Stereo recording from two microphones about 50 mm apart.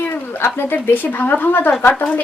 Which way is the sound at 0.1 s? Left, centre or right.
Left.